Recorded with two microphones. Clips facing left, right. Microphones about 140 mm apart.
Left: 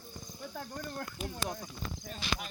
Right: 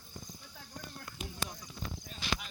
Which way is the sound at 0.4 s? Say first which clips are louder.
Left 9 dB; 60° left (ahead or behind).